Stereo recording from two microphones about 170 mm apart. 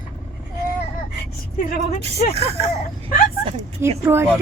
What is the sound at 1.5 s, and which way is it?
Speech, 45° left (ahead or behind).